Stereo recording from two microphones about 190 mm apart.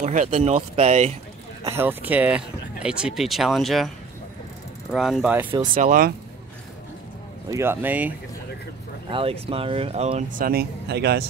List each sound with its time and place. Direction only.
0.0 s speech: 40° right (ahead or behind)
1.8 s speech: 10° right (ahead or behind)
4.9 s speech: centre (ahead or behind)
5.8 s speech: 45° right (ahead or behind)
7.4 s speech: 15° right (ahead or behind)
9.1 s speech: 30° right (ahead or behind); by 11.2 s 60° right (ahead or behind)